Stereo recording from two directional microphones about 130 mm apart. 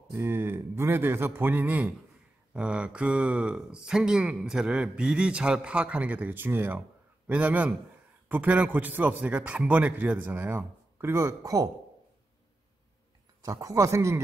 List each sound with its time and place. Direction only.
0.1 s speech: 20° right (ahead or behind)
13.4 s speech: 25° right (ahead or behind)